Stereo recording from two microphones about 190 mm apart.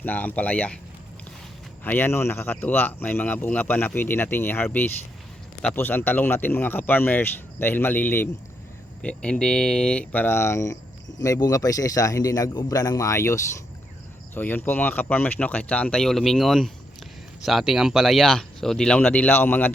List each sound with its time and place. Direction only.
0.0 s speech: 10° left (ahead or behind)
1.8 s speech: 10° left (ahead or behind)